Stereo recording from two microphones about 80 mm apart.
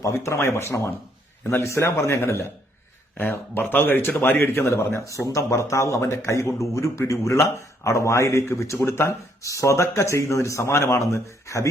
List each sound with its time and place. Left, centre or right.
0.0 s speech: left